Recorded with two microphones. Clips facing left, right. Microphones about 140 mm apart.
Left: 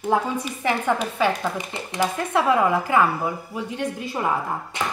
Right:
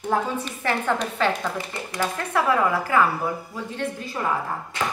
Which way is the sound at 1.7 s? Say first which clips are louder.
Left 3 dB; 20° left (ahead or behind).